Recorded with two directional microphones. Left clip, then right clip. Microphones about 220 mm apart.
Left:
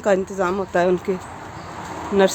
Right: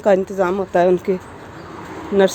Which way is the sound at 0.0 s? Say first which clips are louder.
Right 4 dB; 20° right (ahead or behind).